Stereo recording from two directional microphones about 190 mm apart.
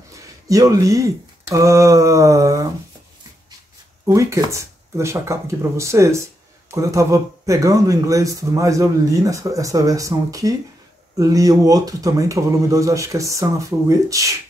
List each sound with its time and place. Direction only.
0.1 s speech: 20° right (ahead or behind)
4.0 s speech: 15° right (ahead or behind)